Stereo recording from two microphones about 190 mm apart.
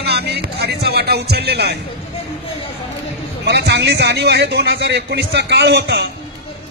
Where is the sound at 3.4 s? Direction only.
65° right (ahead or behind).